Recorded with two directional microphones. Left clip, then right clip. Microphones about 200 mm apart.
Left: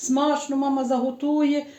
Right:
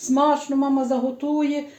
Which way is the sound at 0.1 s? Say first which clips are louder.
Right 3 dB; 25° left (ahead or behind).